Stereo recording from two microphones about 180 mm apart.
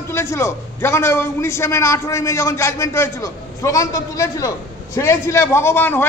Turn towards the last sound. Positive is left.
turn(degrees=10)  # may be behind; listen again after turning